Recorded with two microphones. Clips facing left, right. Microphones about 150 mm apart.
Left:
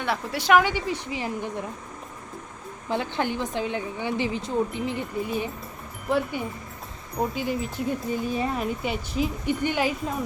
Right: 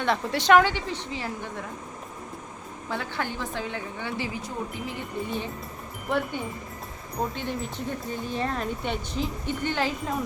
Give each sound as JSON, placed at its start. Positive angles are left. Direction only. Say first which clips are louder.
{"t": 0.0, "sound": "speech", "louder": "right 2 dB", "side_deg": 10}
{"t": 2.9, "sound": "a woman's voice", "louder": "left 5 dB", "side_deg": 20}
{"t": 5.2, "sound": "speech", "louder": "left 3 dB", "side_deg": 5}